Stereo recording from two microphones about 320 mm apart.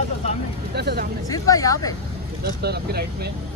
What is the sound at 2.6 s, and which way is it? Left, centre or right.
Speech, right.